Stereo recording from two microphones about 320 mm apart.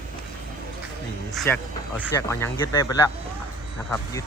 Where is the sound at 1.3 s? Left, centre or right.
Centre.